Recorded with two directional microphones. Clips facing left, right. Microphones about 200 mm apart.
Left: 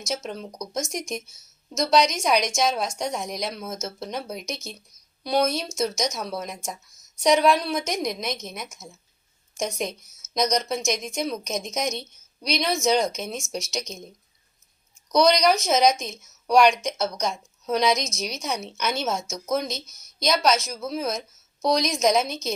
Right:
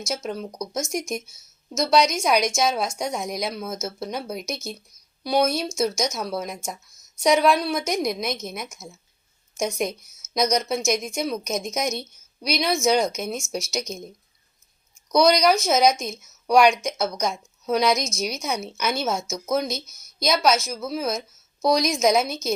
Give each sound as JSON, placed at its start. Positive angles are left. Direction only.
{"t": 0.1, "sound": "a woman's voice", "side_deg": -5}
{"t": 5.9, "sound": "speech", "side_deg": 15}
{"t": 6.1, "sound": "a woman's voice", "side_deg": -5}
{"t": 15.1, "sound": "a woman's voice", "side_deg": -5}